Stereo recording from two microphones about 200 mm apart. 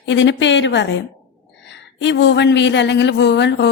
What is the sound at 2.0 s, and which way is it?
A woman's voice, 60° left (ahead or behind).